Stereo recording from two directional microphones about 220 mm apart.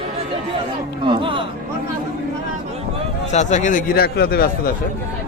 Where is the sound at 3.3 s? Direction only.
30° left (ahead or behind).